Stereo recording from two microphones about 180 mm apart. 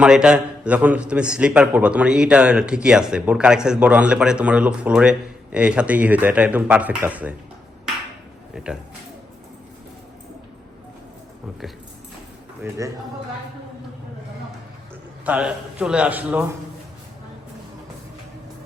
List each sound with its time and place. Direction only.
0.0 s a man's voice: 5° right (ahead or behind)
8.5 s speech: 5° right (ahead or behind)
12.6 s a man's voice: 20° right (ahead or behind)
15.2 s a man's voice: 5° right (ahead or behind)